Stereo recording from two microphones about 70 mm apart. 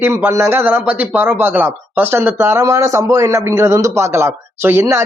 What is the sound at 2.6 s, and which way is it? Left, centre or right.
A man's voice, right.